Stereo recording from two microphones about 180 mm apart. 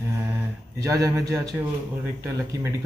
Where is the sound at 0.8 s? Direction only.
20° right (ahead or behind).